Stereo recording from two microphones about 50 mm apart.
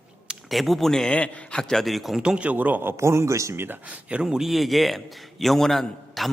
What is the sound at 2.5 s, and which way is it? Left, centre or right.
Speech, right.